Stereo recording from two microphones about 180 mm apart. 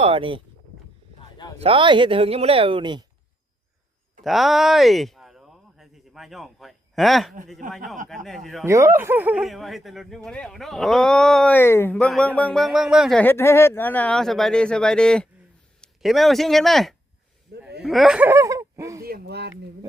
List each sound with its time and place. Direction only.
0.0 s speech: 30° right (ahead or behind)
1.5 s speech: 30° right (ahead or behind)
4.2 s a sound: centre (ahead or behind)
7.6 s speech: 45° right (ahead or behind)
8.0 s speech: centre (ahead or behind)
8.6 s speech: 15° right (ahead or behind); by 16.9 s centre (ahead or behind)
17.5 s a sound: 65° right (ahead or behind)
17.8 s speech: centre (ahead or behind)
18.3 s a sound: 15° right (ahead or behind)
19.0 s speech: 60° right (ahead or behind); by 19.5 s 80° right